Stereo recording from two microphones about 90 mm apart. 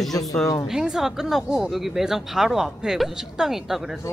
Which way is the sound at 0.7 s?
5° right (ahead or behind).